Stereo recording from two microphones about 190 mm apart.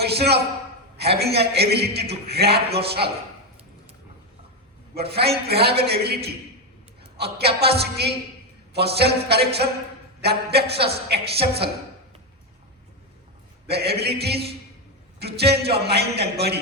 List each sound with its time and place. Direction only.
0.0 s a woman's voice: 60° right (ahead or behind)
4.9 s a man's voice: 60° right (ahead or behind)
13.7 s a man's voice: 60° right (ahead or behind)